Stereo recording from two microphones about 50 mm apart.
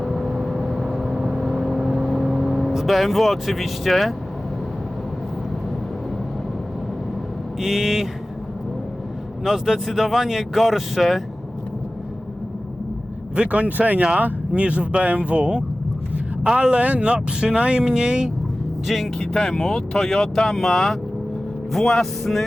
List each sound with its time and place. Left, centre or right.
0.0 s vehicle: centre
7.6 s a sound: centre
9.4 s speech: centre
13.3 s speech: right
17.8 s a sound: centre
18.9 s speech: centre
19.2 s speech: centre